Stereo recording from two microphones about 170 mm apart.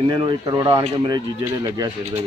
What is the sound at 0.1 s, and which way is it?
Speech, 25° right (ahead or behind).